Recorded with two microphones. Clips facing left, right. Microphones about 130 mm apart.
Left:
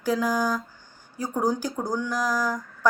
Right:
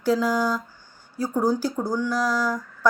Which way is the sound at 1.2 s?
15° left (ahead or behind).